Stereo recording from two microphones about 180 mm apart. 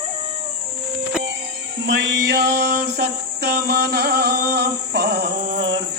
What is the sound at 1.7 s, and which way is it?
Male singing, 75° right (ahead or behind).